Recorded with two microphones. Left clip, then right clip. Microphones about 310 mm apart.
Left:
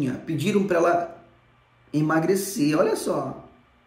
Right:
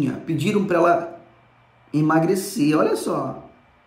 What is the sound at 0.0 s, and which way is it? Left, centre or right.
Speech, centre.